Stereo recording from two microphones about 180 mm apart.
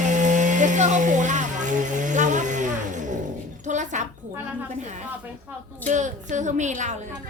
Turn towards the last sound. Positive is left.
turn(degrees=-40)  # may be behind; listen again after turning